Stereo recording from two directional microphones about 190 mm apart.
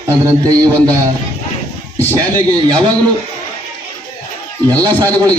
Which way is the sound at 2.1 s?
20° right (ahead or behind).